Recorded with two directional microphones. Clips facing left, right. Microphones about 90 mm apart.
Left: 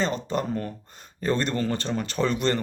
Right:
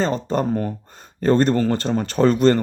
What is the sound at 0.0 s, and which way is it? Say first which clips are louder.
Speech: right 5 dB; 40° right (ahead or behind).